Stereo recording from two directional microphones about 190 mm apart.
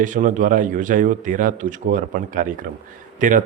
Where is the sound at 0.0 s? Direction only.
45° right (ahead or behind).